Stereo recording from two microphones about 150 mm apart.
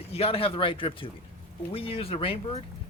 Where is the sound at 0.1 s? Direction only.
40° left (ahead or behind).